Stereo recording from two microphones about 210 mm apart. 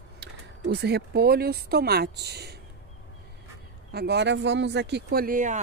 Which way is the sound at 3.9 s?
50° right (ahead or behind).